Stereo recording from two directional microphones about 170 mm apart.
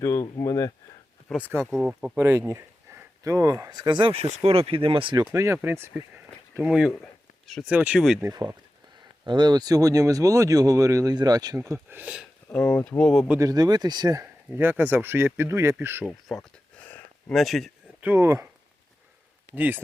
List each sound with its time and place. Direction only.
0.0 s speech: 20° left (ahead or behind)
1.3 s speech: 10° right (ahead or behind); by 5.2 s 30° right (ahead or behind)
5.2 s speech: 15° right (ahead or behind)
8.2 s speech: 20° right (ahead or behind)
11.7 s speech: 10° right (ahead or behind)
12.5 s speech: 10° left (ahead or behind)
13.3 s speech: 20° right (ahead or behind)
16.0 s a sound: 5° left (ahead or behind)
18.0 s speech: 15° right (ahead or behind)
19.5 s speech: 10° right (ahead or behind)